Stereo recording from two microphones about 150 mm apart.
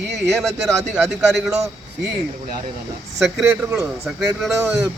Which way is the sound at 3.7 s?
5° right (ahead or behind).